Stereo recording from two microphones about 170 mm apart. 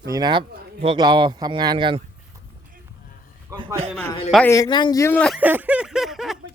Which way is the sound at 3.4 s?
30° right (ahead or behind).